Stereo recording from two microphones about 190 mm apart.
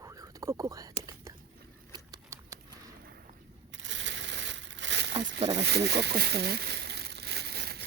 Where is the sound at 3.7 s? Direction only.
75° right (ahead or behind).